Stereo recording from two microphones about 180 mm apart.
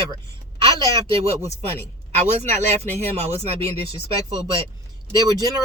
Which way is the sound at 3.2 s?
35° right (ahead or behind).